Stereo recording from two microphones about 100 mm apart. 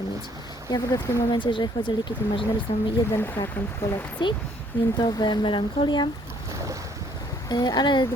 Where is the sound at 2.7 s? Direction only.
50° left (ahead or behind).